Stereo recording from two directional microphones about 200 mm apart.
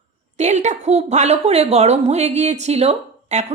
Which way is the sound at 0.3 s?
35° right (ahead or behind).